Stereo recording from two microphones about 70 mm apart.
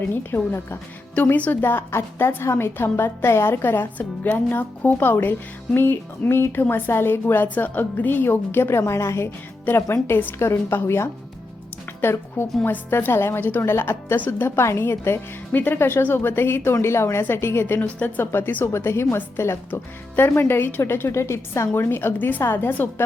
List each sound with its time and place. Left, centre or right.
0.1 s a woman's voice: left
1.1 s a woman's voice: centre
8.9 s a woman's voice: left
10.3 s a woman's voice: left
17.7 s a woman's voice: left